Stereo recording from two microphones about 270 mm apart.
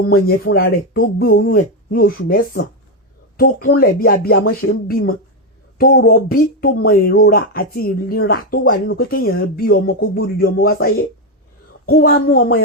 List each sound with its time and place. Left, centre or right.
0.1 s speech: left
3.8 s speech: left